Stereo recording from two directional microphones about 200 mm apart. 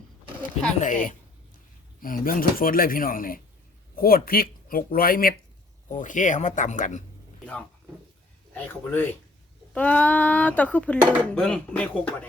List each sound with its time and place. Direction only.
0.8 s speech: 40° left (ahead or behind)
8.5 s speech: 10° left (ahead or behind)